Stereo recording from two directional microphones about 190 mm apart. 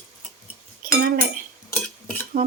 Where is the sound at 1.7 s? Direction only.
15° left (ahead or behind).